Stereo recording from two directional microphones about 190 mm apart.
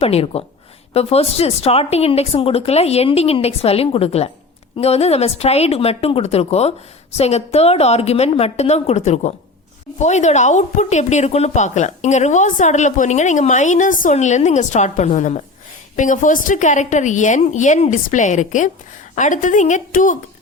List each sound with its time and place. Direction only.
0.0 s a woman's voice: 30° left (ahead or behind)